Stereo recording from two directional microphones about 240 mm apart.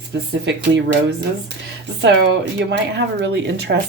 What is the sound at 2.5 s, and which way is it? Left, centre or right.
Speech, right.